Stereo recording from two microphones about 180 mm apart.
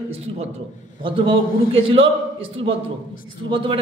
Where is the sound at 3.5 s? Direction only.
30° right (ahead or behind).